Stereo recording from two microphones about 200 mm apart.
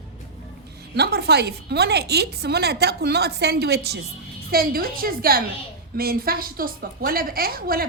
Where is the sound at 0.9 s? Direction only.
55° right (ahead or behind).